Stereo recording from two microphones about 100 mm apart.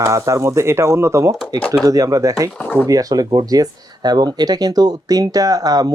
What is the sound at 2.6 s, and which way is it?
Speech, 20° left (ahead or behind).